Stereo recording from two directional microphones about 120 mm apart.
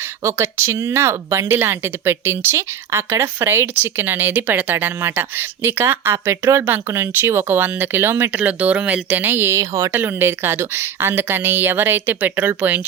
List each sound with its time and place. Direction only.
0.3 s speech: 20° right (ahead or behind)